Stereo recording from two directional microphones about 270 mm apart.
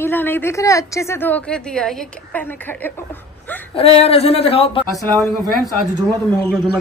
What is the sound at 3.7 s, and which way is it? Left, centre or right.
Speech, left.